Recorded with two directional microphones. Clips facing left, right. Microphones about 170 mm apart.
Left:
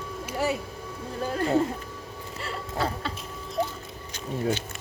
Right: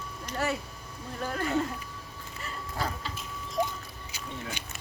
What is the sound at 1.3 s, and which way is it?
Speech, 30° left (ahead or behind).